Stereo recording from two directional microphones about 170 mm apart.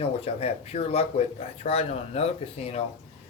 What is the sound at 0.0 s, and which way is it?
Speech, 35° left (ahead or behind).